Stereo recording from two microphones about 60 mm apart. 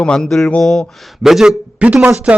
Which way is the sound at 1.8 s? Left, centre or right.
Right.